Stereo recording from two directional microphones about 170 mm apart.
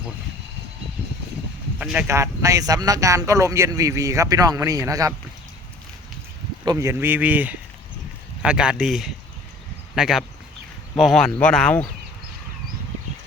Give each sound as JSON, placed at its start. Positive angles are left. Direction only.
{"t": 1.8, "sound": "speech", "side_deg": -5}
{"t": 2.0, "sound": "speech", "side_deg": -15}
{"t": 6.7, "sound": "speech", "side_deg": -15}